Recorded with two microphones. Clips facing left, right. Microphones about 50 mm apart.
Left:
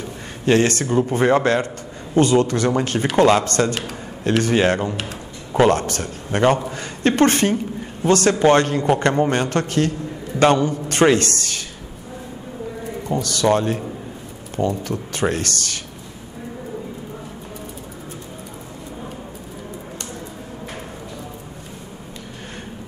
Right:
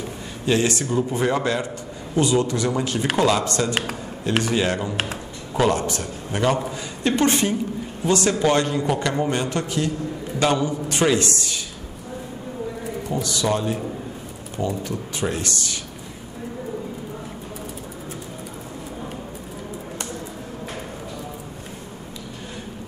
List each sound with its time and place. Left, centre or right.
0.5 s speech: left
0.8 s a man's voice: left
3.2 s a man's voice: left
13.1 s speech: left
14.8 s speech: left